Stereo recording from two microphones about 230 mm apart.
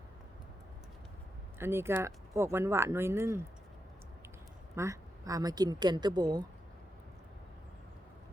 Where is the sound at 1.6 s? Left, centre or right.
Centre.